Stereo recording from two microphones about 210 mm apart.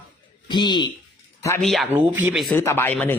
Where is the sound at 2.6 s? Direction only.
10° left (ahead or behind).